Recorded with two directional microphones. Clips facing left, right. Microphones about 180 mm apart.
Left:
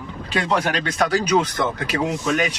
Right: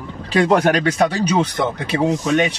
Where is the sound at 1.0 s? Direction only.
25° right (ahead or behind).